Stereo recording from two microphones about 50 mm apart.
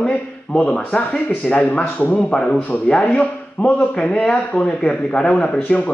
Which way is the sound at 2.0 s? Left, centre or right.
Left.